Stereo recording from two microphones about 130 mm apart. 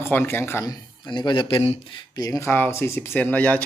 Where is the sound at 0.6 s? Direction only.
35° left (ahead or behind).